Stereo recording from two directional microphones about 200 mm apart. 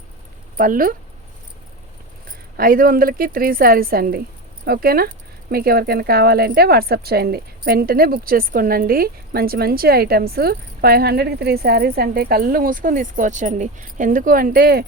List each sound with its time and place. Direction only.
0.5 s speech: 45° right (ahead or behind)
2.6 s speech: 45° right (ahead or behind)